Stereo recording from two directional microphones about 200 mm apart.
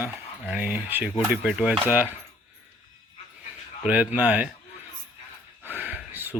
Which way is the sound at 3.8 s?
5° right (ahead or behind).